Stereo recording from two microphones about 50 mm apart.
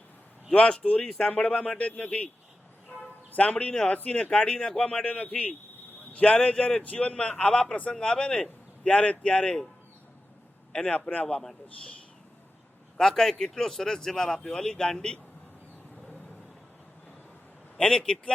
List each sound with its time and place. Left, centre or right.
0.5 s a man's voice: left
3.3 s a man's voice: left
5.0 s a man's voice: left
10.7 s a man's voice: centre
13.0 s speech: centre
17.7 s speech: centre